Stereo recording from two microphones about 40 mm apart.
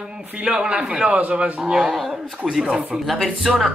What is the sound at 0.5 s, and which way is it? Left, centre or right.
Speech, right.